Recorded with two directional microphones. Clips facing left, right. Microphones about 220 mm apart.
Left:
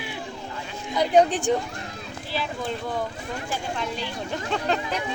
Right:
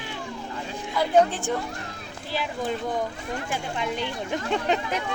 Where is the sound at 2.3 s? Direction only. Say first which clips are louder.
Right 1 dB; 10° right (ahead or behind).